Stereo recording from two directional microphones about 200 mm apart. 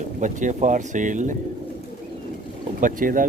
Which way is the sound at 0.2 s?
40° right (ahead or behind).